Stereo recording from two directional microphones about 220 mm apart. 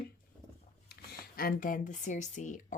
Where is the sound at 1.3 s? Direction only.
40° left (ahead or behind).